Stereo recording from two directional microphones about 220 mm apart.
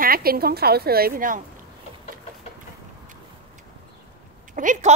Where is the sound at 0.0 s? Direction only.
45° right (ahead or behind).